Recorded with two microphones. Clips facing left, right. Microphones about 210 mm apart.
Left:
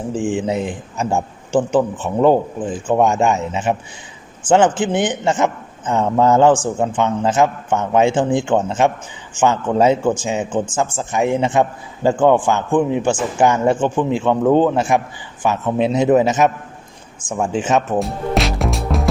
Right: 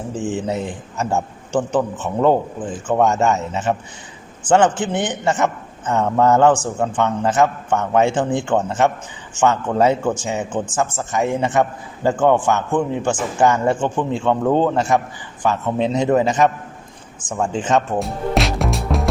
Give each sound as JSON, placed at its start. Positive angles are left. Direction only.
{"t": 0.3, "sound": "a man's voice", "side_deg": 15}
{"t": 17.2, "sound": "music", "side_deg": 10}